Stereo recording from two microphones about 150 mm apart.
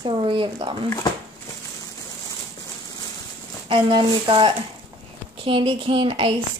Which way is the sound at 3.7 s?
35° right (ahead or behind).